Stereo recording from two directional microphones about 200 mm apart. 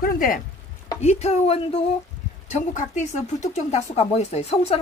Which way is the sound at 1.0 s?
35° left (ahead or behind).